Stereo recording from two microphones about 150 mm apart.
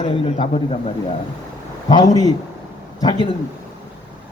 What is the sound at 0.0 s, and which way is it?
Speech, 40° left (ahead or behind).